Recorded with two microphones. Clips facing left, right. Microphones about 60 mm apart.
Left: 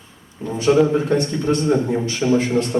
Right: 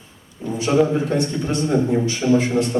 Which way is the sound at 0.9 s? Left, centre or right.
Left.